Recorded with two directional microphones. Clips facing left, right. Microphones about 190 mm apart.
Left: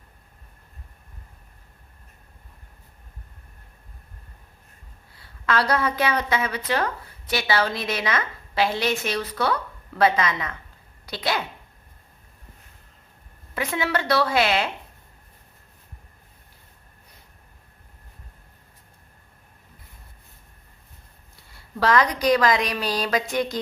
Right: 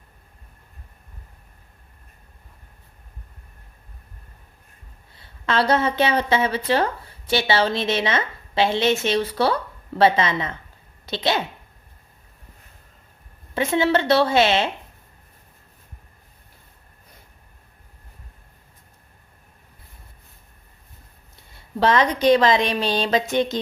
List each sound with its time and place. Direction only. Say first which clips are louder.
5.1 s a woman's voice: right 2 dB; 25° right (ahead or behind)
13.5 s a woman's voice: right 6 dB; 25° right (ahead or behind)
21.5 s a woman's voice: right 2 dB; 25° right (ahead or behind)